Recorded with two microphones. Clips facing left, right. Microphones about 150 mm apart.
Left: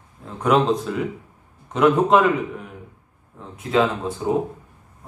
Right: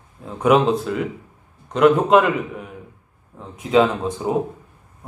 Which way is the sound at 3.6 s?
15° right (ahead or behind).